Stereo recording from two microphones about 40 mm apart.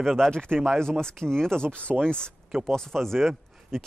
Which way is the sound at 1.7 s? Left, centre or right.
Left.